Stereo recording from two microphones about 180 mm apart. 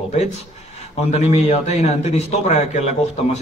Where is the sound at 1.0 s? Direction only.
35° left (ahead or behind).